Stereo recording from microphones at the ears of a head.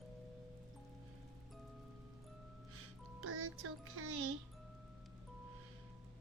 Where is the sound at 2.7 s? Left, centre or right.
Right.